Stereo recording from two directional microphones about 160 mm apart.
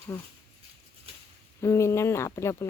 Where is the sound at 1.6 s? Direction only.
15° left (ahead or behind).